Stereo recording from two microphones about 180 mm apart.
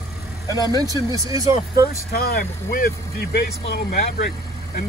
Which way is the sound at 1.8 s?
60° left (ahead or behind).